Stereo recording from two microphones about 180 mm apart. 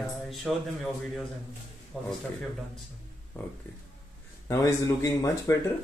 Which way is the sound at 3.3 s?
15° left (ahead or behind).